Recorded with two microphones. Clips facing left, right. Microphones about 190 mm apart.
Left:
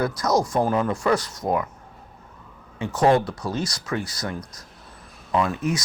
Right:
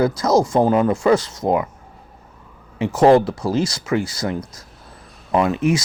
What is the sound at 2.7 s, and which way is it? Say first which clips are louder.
Speech: right 6 dB; 25° right (ahead or behind).